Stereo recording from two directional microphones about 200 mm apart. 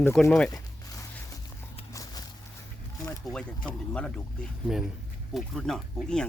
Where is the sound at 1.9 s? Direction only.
15° left (ahead or behind).